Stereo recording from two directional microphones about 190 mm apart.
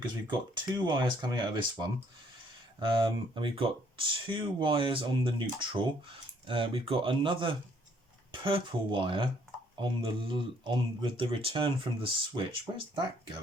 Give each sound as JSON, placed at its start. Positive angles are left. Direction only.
{"t": 0.0, "sound": "speech", "side_deg": -25}